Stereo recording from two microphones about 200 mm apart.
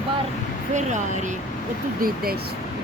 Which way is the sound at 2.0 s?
50° right (ahead or behind).